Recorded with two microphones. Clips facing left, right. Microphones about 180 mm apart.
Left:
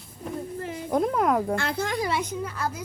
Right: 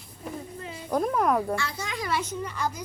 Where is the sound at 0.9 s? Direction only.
20° left (ahead or behind).